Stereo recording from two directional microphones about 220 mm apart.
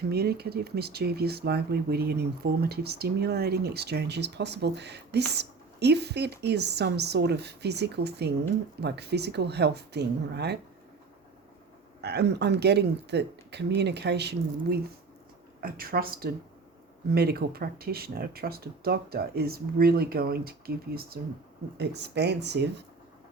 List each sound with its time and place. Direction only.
0.1 s speech: 45° right (ahead or behind)
12.0 s speech: 50° right (ahead or behind)